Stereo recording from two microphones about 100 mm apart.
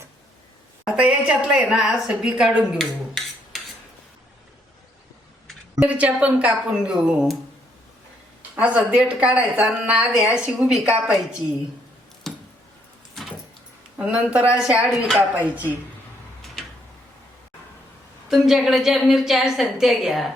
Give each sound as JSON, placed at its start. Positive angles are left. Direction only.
{"t": 0.9, "sound": "a woman's voice", "side_deg": -10}
{"t": 5.9, "sound": "a woman's voice", "side_deg": -15}
{"t": 8.4, "sound": "a woman's voice", "side_deg": -15}
{"t": 12.3, "sound": "a sound", "side_deg": 5}
{"t": 14.0, "sound": "a woman's voice", "side_deg": -15}
{"t": 15.4, "sound": "a woman's voice", "side_deg": -15}
{"t": 18.3, "sound": "a woman's voice", "side_deg": 0}